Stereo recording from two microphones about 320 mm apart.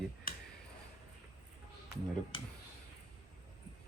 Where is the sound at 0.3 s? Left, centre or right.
Left.